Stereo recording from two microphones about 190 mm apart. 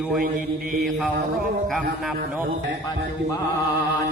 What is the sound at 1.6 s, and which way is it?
Speech, centre (ahead or behind).